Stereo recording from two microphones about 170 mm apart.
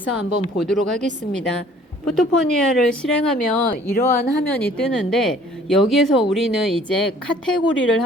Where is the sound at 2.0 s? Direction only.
5° left (ahead or behind).